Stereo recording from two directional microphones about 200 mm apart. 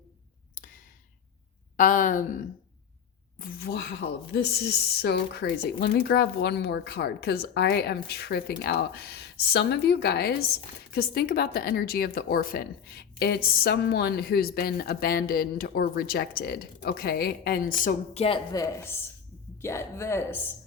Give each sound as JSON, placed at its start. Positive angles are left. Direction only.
{"t": 0.5, "sound": "a sound", "side_deg": 40}
{"t": 1.7, "sound": "a woman's voice", "side_deg": 40}
{"t": 18.2, "sound": "a woman's voice", "side_deg": 20}